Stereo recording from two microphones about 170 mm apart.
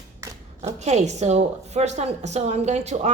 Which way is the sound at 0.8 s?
40° right (ahead or behind).